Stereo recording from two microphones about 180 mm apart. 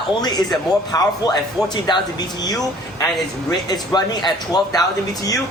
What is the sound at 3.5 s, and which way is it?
Speech, 20° left (ahead or behind).